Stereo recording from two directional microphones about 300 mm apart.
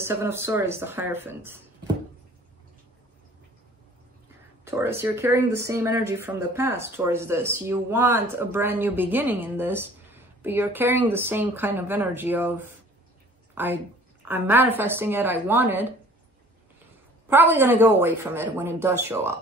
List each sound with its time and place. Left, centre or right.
0.0 s speech: centre
4.6 s speech: centre
17.3 s speech: centre